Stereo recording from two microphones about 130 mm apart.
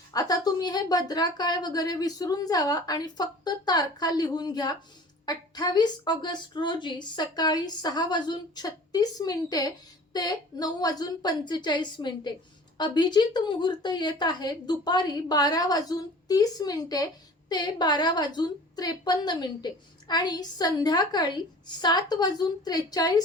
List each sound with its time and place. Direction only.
0.1 s a woman's voice: 30° left (ahead or behind)